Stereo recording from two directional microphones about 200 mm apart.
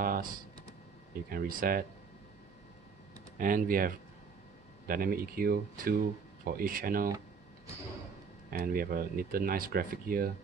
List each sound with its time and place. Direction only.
0.0 s computer keyboard: 45° right (ahead or behind)
1.3 s speech: 45° right (ahead or behind)
3.3 s speech: 45° right (ahead or behind)
8.5 s speech: 45° right (ahead or behind)